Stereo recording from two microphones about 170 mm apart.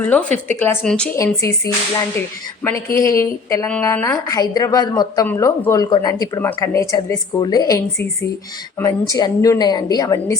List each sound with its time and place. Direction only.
0.0 s speech: 10° left (ahead or behind)
1.1 s speech: 15° left (ahead or behind)